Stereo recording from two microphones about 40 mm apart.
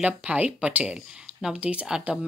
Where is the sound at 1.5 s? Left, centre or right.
Right.